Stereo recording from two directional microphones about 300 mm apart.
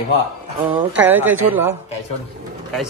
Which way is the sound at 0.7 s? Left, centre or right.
Centre.